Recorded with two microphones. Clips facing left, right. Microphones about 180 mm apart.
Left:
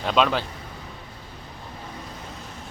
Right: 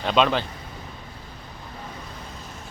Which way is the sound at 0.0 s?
Centre (ahead or behind).